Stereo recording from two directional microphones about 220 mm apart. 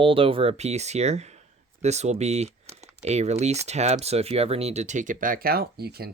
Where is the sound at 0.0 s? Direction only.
25° right (ahead or behind).